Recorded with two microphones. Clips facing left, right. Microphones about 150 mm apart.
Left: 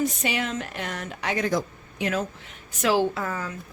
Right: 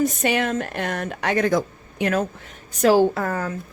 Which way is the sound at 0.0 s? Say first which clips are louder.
Right 5 dB; 50° right (ahead or behind).